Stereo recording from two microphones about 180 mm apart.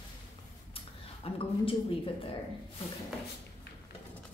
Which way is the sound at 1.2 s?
30° left (ahead or behind).